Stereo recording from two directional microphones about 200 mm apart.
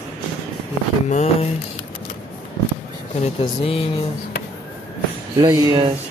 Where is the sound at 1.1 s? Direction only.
35° left (ahead or behind).